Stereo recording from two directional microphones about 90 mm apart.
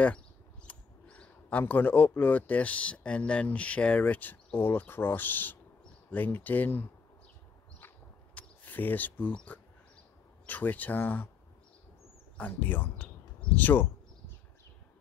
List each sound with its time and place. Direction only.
0.7 s a sound: 15° left (ahead or behind)
1.6 s speech: 20° left (ahead or behind)
8.4 s speech: 20° left (ahead or behind)
12.4 s speech: 20° left (ahead or behind)